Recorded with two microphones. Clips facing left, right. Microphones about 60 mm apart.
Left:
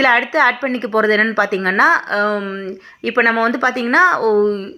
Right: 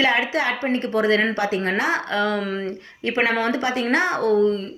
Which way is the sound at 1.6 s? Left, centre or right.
Left.